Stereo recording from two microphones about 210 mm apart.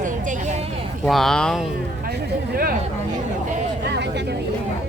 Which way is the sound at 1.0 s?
Centre (ahead or behind).